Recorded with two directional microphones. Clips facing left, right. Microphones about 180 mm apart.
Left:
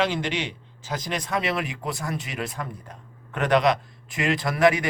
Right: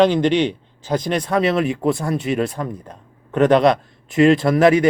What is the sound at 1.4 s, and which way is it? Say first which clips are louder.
Speech: right 10 dB; 25° right (ahead or behind).